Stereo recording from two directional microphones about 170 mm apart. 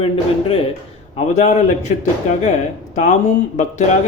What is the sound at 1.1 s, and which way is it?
Speech, 45° left (ahead or behind).